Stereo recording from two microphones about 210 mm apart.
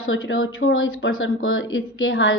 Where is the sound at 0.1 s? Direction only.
70° left (ahead or behind).